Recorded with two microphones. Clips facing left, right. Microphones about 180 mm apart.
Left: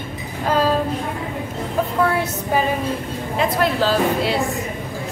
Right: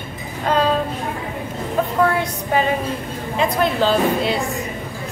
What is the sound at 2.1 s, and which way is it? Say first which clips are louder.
A woman's voice: even; 5° left (ahead or behind).